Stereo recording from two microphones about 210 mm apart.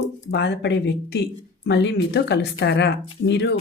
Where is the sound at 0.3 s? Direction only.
55° left (ahead or behind).